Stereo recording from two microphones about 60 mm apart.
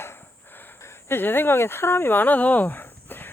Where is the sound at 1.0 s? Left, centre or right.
Left.